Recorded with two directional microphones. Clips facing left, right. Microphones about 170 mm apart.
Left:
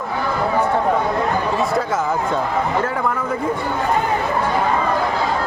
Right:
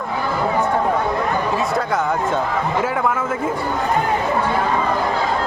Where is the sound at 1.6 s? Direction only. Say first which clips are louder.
Even; centre (ahead or behind).